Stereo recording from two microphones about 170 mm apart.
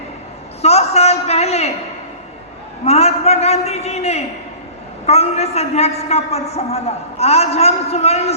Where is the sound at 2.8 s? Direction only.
40° left (ahead or behind).